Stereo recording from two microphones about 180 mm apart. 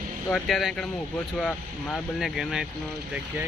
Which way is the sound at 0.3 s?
5° left (ahead or behind).